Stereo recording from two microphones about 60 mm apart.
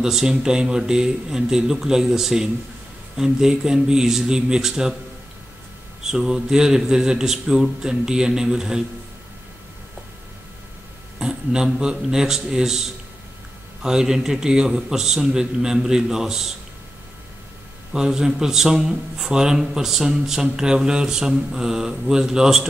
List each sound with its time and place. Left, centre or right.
0.0 s a man's voice: centre
6.0 s a man's voice: centre
11.1 s a man's voice: centre
17.9 s a man's voice: centre